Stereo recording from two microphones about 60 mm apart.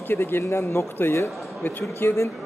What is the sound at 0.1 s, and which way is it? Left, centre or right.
Speech, left.